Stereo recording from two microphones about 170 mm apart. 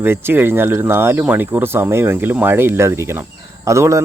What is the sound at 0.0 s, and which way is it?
Speech, 10° right (ahead or behind).